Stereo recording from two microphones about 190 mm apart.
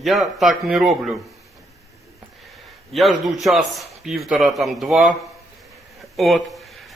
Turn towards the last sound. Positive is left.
turn(degrees=0)  # may be behind; listen again after turning